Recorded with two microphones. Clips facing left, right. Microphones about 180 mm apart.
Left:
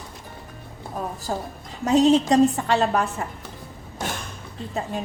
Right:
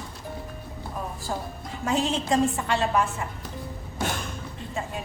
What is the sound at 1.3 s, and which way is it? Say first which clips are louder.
A woman's voice: left 2 dB; 40° left (ahead or behind).